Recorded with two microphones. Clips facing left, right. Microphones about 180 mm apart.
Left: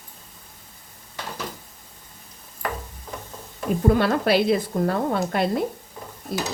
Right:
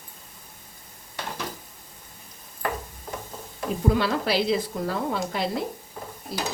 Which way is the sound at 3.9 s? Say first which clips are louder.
Left 4 dB; 50° left (ahead or behind).